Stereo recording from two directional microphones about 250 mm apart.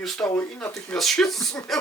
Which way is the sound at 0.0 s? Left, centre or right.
Centre.